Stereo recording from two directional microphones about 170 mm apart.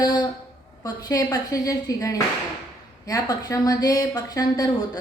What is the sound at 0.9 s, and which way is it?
A woman's voice, 20° left (ahead or behind).